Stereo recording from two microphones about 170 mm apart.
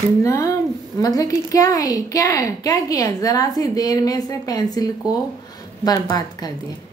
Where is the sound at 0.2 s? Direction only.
20° left (ahead or behind).